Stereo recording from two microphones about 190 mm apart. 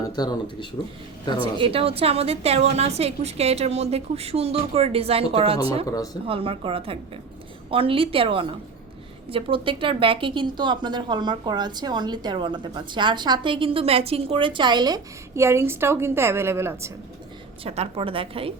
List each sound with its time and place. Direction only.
0.0 s speech: 20° left (ahead or behind)
1.4 s a woman's voice: 30° right (ahead or behind)
5.8 s speech: 20° left (ahead or behind)
6.2 s a woman's voice: 30° right (ahead or behind); by 16.9 s 15° right (ahead or behind)
17.6 s a woman's voice: 30° right (ahead or behind)